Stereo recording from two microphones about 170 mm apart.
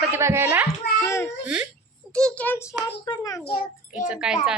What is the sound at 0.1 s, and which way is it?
Speech, 15° right (ahead or behind).